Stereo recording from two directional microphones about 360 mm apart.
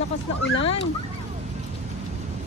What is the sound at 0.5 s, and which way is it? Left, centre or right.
Speech, centre.